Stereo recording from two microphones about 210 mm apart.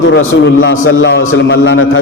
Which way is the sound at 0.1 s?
60° left (ahead or behind).